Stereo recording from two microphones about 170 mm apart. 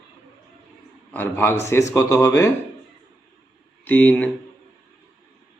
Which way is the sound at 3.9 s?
10° left (ahead or behind).